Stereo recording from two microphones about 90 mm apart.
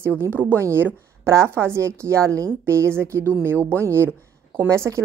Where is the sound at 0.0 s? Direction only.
25° right (ahead or behind).